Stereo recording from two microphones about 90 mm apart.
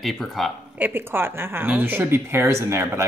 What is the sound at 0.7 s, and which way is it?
Speech, 20° right (ahead or behind).